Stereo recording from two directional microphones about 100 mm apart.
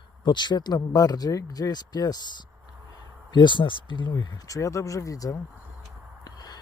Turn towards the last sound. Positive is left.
turn(degrees=40)  # may be behind; listen again after turning